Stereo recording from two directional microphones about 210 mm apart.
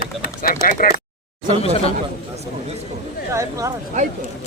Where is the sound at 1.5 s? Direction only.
30° left (ahead or behind).